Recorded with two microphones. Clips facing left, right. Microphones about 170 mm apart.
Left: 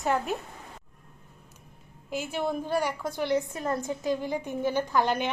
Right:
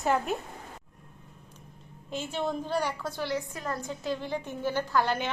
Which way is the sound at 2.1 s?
10° left (ahead or behind).